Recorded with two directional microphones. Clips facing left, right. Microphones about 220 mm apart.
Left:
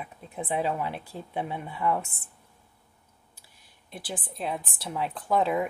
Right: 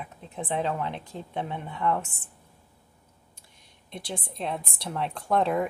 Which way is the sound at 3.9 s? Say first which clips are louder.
Right 1 dB; 5° left (ahead or behind).